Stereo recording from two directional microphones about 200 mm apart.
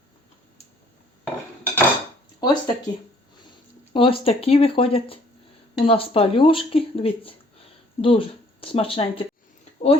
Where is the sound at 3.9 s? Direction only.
25° left (ahead or behind).